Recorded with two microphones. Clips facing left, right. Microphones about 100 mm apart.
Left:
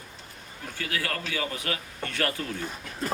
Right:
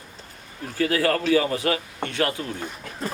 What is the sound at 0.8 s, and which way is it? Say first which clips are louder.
A man's voice: right 11 dB; 35° right (ahead or behind).